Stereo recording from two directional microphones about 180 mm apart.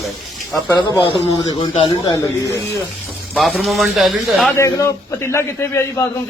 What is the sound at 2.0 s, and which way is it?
Speech, 20° left (ahead or behind).